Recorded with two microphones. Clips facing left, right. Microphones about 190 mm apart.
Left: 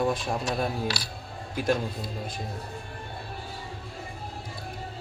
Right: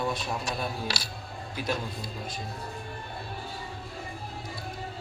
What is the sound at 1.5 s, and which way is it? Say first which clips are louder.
Speech: left 6 dB; 50° left (ahead or behind).